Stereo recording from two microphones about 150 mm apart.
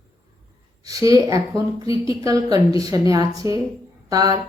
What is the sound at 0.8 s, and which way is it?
A woman's voice, 25° right (ahead or behind).